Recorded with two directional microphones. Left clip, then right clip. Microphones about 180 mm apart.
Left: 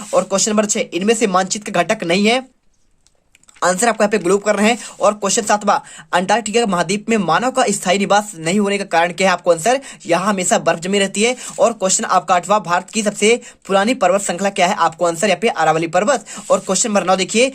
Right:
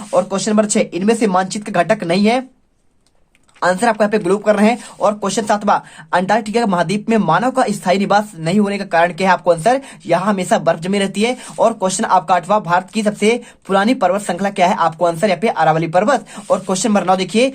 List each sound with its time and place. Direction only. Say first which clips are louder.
0.1 s speech: even; 25° left (ahead or behind)
3.6 s speech: right 1 dB; 20° left (ahead or behind)